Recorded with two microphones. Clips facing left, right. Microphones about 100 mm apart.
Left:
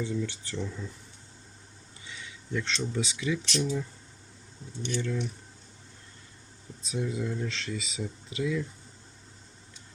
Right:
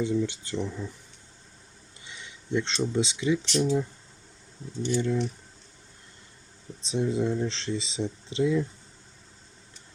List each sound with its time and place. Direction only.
0.0 s speech: 20° right (ahead or behind)
2.0 s speech: 20° right (ahead or behind)
4.9 s speech: 20° right (ahead or behind)
6.8 s speech: 25° right (ahead or behind)